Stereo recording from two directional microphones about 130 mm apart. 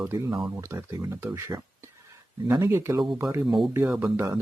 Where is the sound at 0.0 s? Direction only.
25° right (ahead or behind).